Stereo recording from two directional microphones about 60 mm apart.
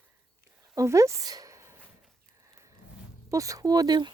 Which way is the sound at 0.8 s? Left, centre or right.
Right.